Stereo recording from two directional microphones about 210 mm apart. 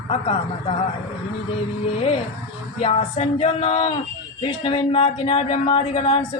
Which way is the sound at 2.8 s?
30° left (ahead or behind).